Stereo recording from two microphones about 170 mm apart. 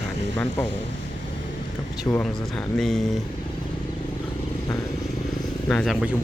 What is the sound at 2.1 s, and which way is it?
Speech, 5° left (ahead or behind).